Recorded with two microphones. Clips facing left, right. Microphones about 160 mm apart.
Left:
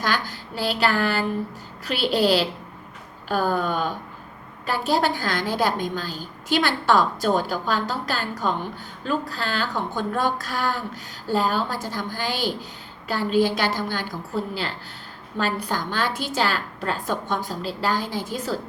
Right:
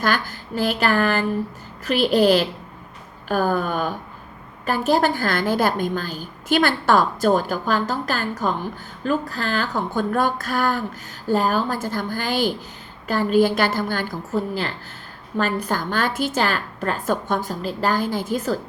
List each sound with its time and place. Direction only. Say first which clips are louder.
0.0 s a woman's voice: right 3 dB; 50° right (ahead or behind)